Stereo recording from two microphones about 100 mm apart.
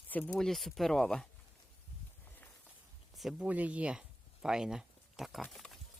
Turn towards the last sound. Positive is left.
turn(degrees=5)  # may be behind; listen again after turning